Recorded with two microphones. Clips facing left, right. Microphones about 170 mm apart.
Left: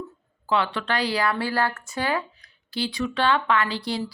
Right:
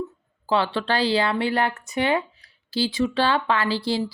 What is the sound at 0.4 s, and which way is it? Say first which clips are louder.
Speech: right 2 dB; 30° right (ahead or behind).